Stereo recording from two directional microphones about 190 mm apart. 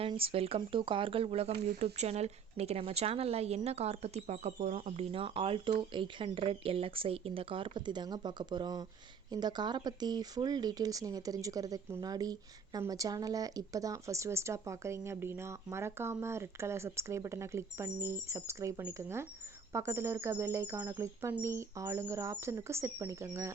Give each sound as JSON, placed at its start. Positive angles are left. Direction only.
{"t": 0.0, "sound": "speech", "side_deg": -30}